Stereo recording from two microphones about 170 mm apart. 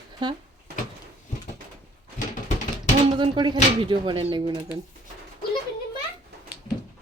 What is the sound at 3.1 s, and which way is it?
Speech, 30° right (ahead or behind).